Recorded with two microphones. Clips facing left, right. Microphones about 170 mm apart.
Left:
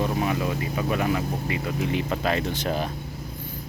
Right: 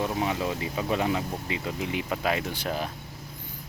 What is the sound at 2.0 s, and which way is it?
Speech, 10° right (ahead or behind).